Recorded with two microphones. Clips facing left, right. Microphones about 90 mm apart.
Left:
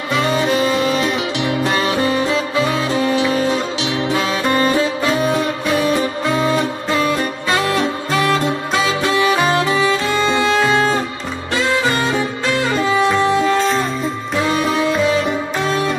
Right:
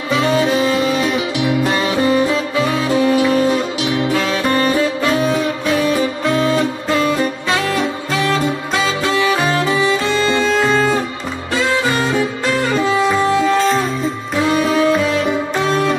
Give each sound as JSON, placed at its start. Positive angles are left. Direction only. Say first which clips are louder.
{"t": 0.1, "sound": "saxophone", "louder": "right 2 dB", "side_deg": -5}
{"t": 1.4, "sound": "music", "louder": "right 2 dB", "side_deg": -10}
{"t": 2.9, "sound": "music", "louder": "right 3 dB", "side_deg": 20}
{"t": 4.1, "sound": "saxophone", "louder": "left 2 dB", "side_deg": 15}
{"t": 5.1, "sound": "music", "louder": "right 1 dB", "side_deg": 0}
{"t": 7.5, "sound": "saxophone", "louder": "left 3 dB", "side_deg": 0}
{"t": 9.0, "sound": "music", "louder": "left 1 dB", "side_deg": 15}
{"t": 11.9, "sound": "music", "louder": "right 1 dB", "side_deg": 0}